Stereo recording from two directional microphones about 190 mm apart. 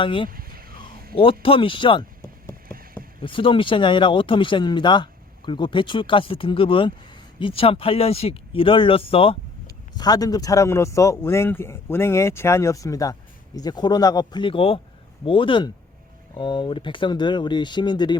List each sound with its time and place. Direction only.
0.0 s speech: 25° left (ahead or behind)
0.3 s a sound: 50° right (ahead or behind)
1.1 s speech: 30° left (ahead or behind)
3.2 s a man's voice: 25° left (ahead or behind)